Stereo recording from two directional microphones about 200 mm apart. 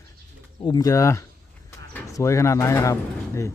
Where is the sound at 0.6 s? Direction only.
20° left (ahead or behind).